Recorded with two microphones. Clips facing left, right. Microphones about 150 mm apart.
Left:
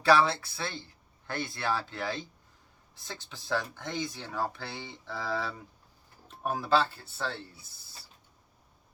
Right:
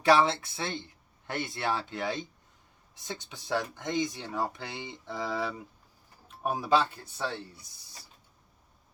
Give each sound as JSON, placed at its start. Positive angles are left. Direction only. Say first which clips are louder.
{"t": 0.0, "sound": "speech", "louder": "right 1 dB", "side_deg": -20}